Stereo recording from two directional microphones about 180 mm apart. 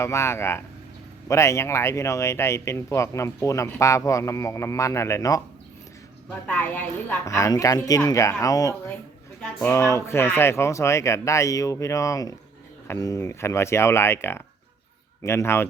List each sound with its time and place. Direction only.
0.0 s speech: 15° left (ahead or behind)
6.5 s speech: 10° left (ahead or behind)